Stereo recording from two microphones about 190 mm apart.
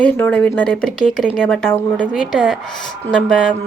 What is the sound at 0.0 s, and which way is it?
Speech, 10° left (ahead or behind).